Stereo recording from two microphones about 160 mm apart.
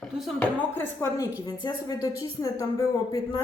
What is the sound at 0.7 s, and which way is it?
A woman's voice, 15° left (ahead or behind).